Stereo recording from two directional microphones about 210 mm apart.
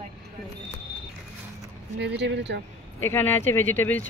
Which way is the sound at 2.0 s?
55° right (ahead or behind).